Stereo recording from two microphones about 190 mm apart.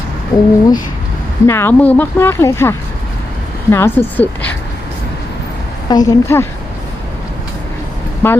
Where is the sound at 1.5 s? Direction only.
10° left (ahead or behind).